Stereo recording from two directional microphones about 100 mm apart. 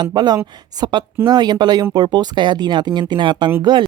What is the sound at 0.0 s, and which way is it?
Speech, 45° right (ahead or behind).